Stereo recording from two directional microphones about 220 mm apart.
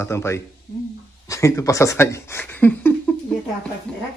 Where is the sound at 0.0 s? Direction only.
10° left (ahead or behind).